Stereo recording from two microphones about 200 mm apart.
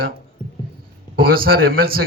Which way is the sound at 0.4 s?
25° left (ahead or behind).